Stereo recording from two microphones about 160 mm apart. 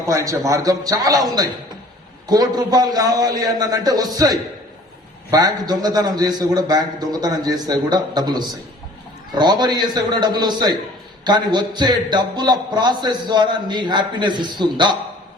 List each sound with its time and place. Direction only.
0.1 s a man's voice: 20° right (ahead or behind)